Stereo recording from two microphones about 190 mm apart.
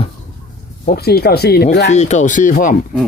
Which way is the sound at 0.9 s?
55° left (ahead or behind).